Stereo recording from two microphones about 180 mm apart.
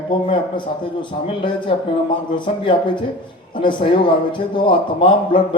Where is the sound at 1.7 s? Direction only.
30° left (ahead or behind).